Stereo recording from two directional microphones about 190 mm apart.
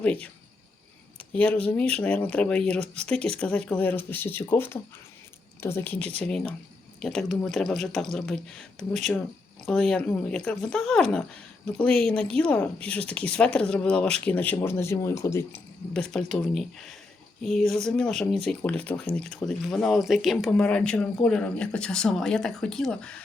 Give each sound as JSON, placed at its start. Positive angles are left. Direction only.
{"t": 0.0, "sound": "speech", "side_deg": 5}
{"t": 1.3, "sound": "speech", "side_deg": 5}